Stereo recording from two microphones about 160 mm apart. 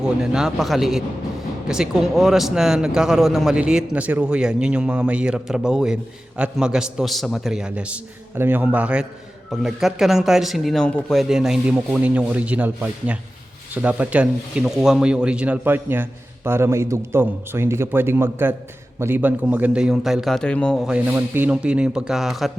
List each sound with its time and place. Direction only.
0.0 s speech: 5° right (ahead or behind)
20.9 s speech: 10° right (ahead or behind)